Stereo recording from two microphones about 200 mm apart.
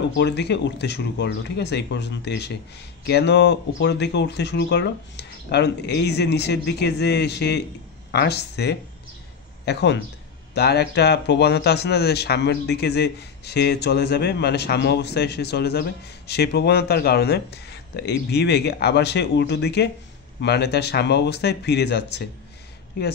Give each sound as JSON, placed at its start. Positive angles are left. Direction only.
{"t": 0.1, "sound": "speech", "side_deg": 60}